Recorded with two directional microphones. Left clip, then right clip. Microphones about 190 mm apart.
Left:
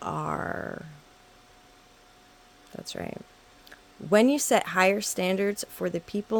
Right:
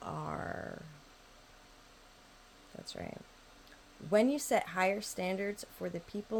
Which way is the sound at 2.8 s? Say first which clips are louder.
Left 8 dB; 45° left (ahead or behind).